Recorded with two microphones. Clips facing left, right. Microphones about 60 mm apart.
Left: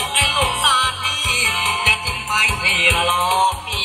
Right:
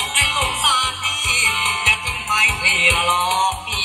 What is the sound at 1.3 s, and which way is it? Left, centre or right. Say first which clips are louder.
Music: right 1 dB; right.